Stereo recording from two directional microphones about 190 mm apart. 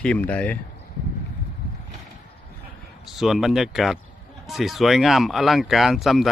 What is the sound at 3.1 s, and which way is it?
Speech, centre (ahead or behind).